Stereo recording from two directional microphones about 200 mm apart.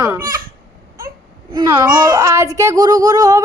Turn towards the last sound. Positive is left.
turn(degrees=-20)  # may be behind; listen again after turning